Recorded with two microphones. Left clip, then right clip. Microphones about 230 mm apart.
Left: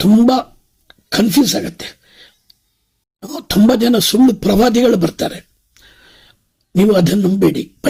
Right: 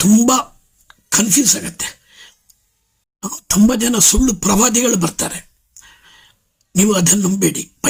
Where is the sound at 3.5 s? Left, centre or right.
Centre.